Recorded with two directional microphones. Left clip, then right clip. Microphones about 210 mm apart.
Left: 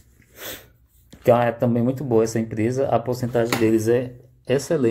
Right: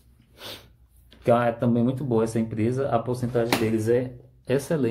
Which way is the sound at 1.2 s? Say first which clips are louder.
Left 4 dB; 25° left (ahead or behind).